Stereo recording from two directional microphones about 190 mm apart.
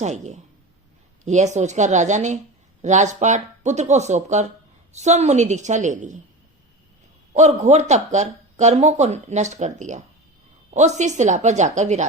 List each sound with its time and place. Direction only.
0.0 s speech: 35° right (ahead or behind)
7.3 s speech: 35° right (ahead or behind)